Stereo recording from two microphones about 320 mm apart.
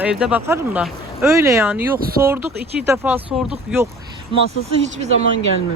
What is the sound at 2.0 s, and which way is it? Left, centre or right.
Speech, right.